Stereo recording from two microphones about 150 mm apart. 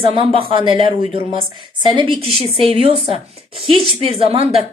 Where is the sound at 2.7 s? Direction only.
45° left (ahead or behind).